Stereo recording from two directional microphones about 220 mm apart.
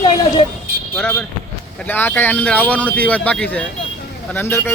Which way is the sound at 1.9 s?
10° left (ahead or behind).